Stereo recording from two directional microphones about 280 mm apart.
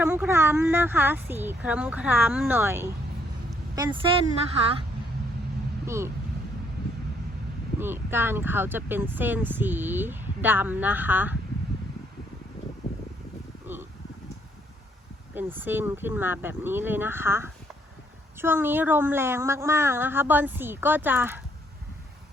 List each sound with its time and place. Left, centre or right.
0.0 s speech: centre
3.5 s vehicle: centre
4.5 s a woman's voice: right
5.8 s speech: centre
7.8 s speech: centre
15.4 s speech: centre